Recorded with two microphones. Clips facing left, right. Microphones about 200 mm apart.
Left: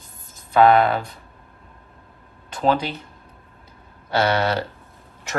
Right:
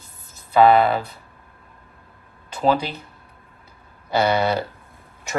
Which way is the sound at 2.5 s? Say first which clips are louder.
Even; 5° right (ahead or behind).